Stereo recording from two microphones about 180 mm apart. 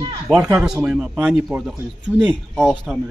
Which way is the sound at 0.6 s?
5° right (ahead or behind).